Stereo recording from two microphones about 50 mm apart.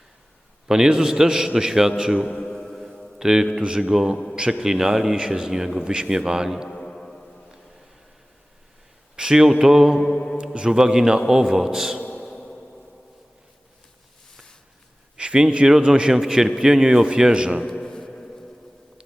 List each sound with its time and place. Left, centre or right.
0.7 s a man's voice: centre
2.4 s mantra: centre
3.2 s a man's voice: centre
5.8 s a man's voice: centre
6.7 s music: centre
9.1 s a man's voice: centre
10.3 s a man's voice: centre
12.2 s a sound: centre
15.1 s a man's voice: centre
17.8 s a sound: centre